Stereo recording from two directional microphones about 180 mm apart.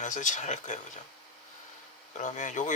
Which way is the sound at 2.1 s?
40° left (ahead or behind).